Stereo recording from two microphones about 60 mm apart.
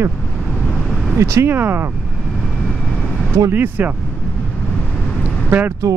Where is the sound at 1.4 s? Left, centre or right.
Right.